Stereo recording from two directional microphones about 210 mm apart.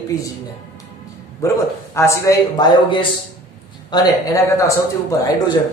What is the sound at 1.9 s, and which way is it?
Speech, 15° left (ahead or behind).